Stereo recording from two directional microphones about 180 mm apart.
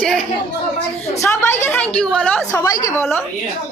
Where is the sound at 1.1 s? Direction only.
15° left (ahead or behind).